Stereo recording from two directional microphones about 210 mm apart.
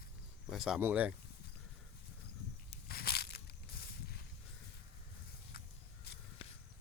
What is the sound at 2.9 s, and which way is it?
Crushing, 50° left (ahead or behind).